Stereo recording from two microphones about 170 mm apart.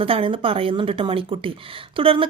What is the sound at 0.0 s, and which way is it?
A woman's voice, 30° right (ahead or behind).